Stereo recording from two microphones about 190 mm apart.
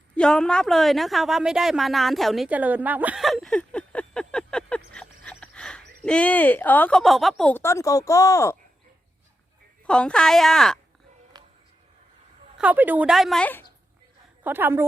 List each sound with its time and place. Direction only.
0.2 s a woman's voice: 5° left (ahead or behind)
9.8 s a woman's voice: 5° left (ahead or behind)
11.3 s a sound: 20° right (ahead or behind)
12.5 s a woman's voice: 10° right (ahead or behind); by 13.7 s 10° left (ahead or behind)
14.4 s a woman's voice: 10° right (ahead or behind)